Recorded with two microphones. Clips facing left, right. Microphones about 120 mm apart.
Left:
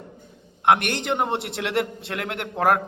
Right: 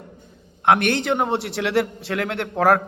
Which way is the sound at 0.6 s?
15° left (ahead or behind).